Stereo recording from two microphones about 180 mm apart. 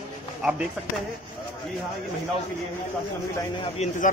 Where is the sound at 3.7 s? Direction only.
40° left (ahead or behind).